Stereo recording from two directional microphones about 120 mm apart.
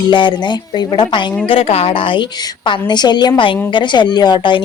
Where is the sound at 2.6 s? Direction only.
35° left (ahead or behind).